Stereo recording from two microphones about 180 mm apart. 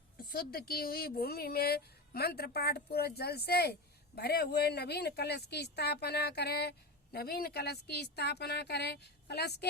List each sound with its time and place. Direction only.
0.3 s speech: 55° left (ahead or behind)